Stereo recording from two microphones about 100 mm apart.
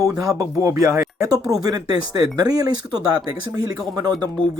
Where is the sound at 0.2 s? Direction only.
35° right (ahead or behind).